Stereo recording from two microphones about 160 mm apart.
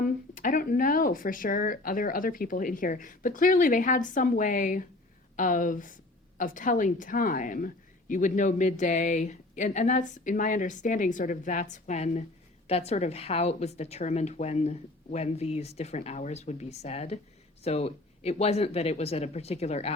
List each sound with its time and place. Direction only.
0.0 s a woman's voice: 60° left (ahead or behind); by 19.9 s 40° left (ahead or behind)